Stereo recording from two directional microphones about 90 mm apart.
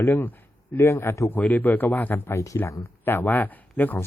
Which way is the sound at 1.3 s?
20° left (ahead or behind).